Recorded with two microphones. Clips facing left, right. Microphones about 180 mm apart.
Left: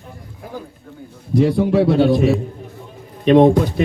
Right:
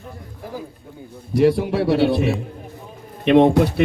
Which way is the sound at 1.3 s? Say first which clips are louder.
Left 1 dB; 70° right (ahead or behind).